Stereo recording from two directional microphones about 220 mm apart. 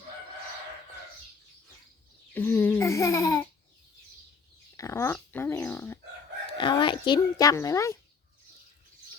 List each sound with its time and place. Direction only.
2.3 s babbling: 10° left (ahead or behind)
4.8 s dog: 15° left (ahead or behind)
6.6 s speech: 20° left (ahead or behind)